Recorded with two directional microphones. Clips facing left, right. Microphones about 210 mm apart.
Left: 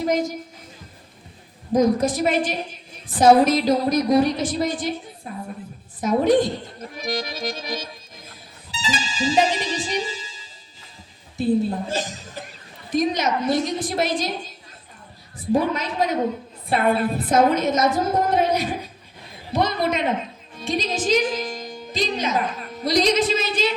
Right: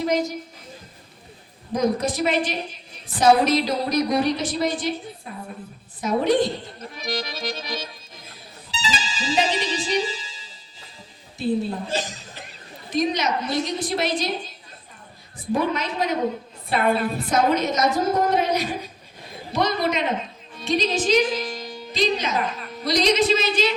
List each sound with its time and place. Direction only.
0.0 s a woman's voice: 50° left (ahead or behind)
1.8 s a woman's voice: 50° left (ahead or behind)
6.0 s a woman's voice: 50° left (ahead or behind)
8.3 s music: 50° left (ahead or behind)
11.3 s a woman's voice: 50° left (ahead or behind)
15.5 s a woman's voice: 45° left (ahead or behind)